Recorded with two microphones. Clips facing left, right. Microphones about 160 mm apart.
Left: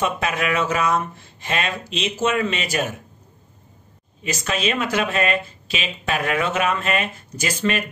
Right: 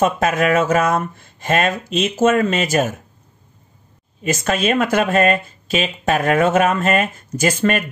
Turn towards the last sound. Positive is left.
turn(degrees=-50)  # may be behind; listen again after turning